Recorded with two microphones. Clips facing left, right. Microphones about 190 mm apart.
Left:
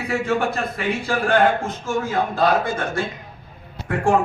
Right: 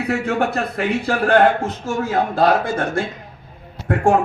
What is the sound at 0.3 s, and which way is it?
A man's voice, 40° right (ahead or behind).